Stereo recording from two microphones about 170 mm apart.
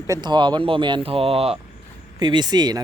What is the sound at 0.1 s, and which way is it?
Speech, 25° right (ahead or behind).